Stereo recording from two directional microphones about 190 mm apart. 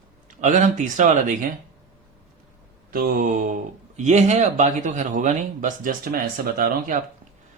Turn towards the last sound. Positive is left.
turn(degrees=-45)  # may be behind; listen again after turning